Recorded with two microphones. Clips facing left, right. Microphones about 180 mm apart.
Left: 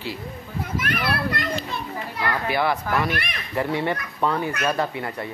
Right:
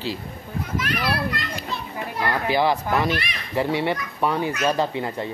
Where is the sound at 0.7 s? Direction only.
55° left (ahead or behind).